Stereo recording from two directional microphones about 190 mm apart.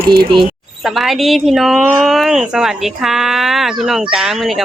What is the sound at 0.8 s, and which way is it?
Speech, centre (ahead or behind).